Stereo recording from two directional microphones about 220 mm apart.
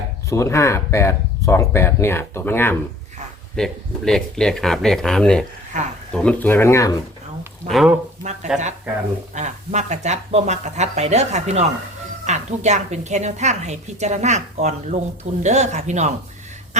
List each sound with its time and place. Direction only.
0.3 s speech: 15° left (ahead or behind)
5.7 s a woman's voice: 35° right (ahead or behind)
6.1 s speech: 5° left (ahead or behind)
7.7 s speech: centre (ahead or behind)
8.2 s a woman's voice: 30° right (ahead or behind)